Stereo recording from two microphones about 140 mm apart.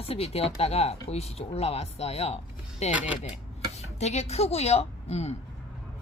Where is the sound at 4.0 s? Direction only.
50° left (ahead or behind).